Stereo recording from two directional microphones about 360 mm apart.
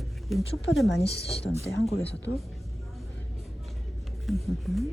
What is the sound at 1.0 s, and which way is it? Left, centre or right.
Speech, centre.